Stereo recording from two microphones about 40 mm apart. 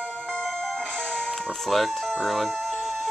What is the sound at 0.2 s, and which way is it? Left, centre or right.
Music, left.